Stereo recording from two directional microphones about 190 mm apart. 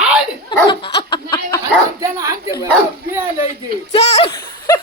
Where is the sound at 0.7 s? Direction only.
25° left (ahead or behind).